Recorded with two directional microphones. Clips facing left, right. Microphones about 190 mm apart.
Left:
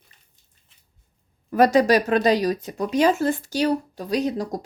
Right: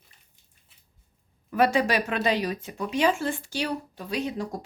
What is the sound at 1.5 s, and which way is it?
Speech, 40° left (ahead or behind).